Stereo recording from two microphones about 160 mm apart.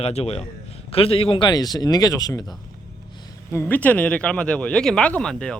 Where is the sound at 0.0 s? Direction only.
40° left (ahead or behind); by 2.6 s 25° left (ahead or behind).